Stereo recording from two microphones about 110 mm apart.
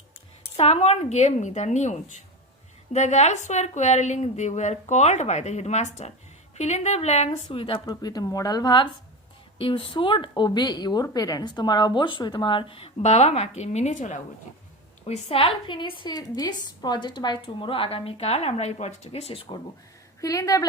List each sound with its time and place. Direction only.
0.5 s a woman's voice: 65° left (ahead or behind)
7.9 s speech: 35° left (ahead or behind)
9.6 s a woman's voice: 55° left (ahead or behind); by 13.9 s 90° left
15.0 s a woman's voice: 65° left (ahead or behind)
20.2 s speech: 30° left (ahead or behind)